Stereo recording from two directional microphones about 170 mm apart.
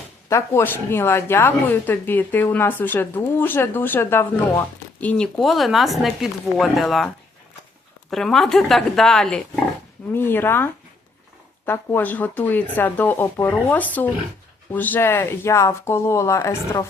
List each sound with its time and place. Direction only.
0.3 s speech: 15° left (ahead or behind); by 7.1 s centre (ahead or behind)
8.1 s a woman's voice: centre (ahead or behind); by 16.8 s 15° left (ahead or behind)